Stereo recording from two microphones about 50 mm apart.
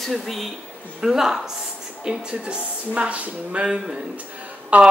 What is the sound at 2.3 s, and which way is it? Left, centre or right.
Speech, right.